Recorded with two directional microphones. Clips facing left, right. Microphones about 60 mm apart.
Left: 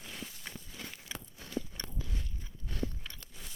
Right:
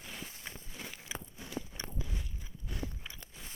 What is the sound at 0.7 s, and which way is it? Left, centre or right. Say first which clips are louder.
Biting: right 2 dB; centre.